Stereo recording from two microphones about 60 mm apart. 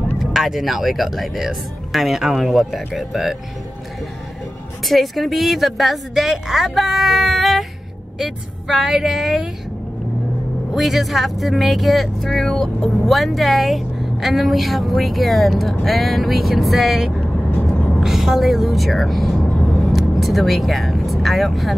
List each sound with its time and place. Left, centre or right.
0.2 s speech: centre
4.8 s speech: centre
10.7 s speech: centre
17.5 s vehicle: left
18.0 s speech: centre